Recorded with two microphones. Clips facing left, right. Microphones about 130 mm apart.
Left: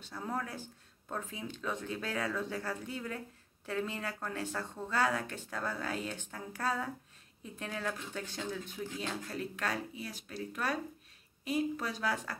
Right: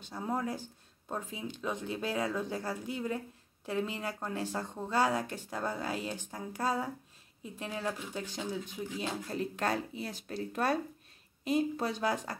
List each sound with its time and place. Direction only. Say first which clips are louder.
0.0 s speech: right 4 dB; 15° right (ahead or behind)